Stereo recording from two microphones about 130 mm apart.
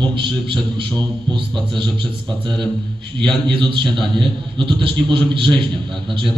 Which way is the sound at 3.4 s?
40° right (ahead or behind).